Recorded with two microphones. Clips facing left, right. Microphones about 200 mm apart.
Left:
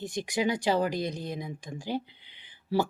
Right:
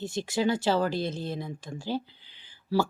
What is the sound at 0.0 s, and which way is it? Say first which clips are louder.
Speech: right 2 dB; 15° left (ahead or behind).